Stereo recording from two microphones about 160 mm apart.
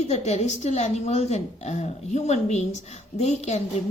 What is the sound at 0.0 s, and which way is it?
A woman's voice, 45° left (ahead or behind).